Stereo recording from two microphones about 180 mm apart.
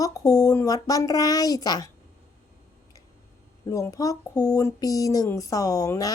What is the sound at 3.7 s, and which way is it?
Speech, 15° left (ahead or behind).